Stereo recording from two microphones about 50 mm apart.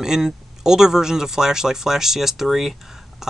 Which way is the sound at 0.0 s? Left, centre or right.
Centre.